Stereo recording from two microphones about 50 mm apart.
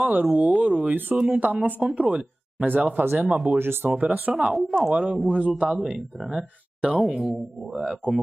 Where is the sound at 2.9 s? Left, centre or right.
Right.